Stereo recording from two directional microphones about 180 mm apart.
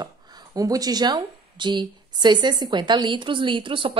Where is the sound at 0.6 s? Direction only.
20° right (ahead or behind).